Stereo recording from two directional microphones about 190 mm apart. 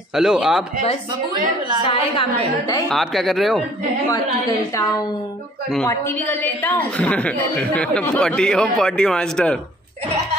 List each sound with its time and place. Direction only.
0.1 s a woman's voice: centre (ahead or behind)
1.9 s a woman's voice: 25° left (ahead or behind)
2.9 s a woman's voice: centre (ahead or behind)
4.1 s a woman's voice: 20° left (ahead or behind); by 9.6 s 5° left (ahead or behind)